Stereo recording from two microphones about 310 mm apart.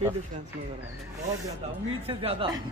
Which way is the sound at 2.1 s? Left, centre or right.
Centre.